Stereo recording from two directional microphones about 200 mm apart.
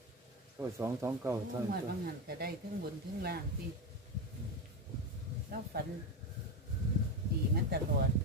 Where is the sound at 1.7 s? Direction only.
50° right (ahead or behind).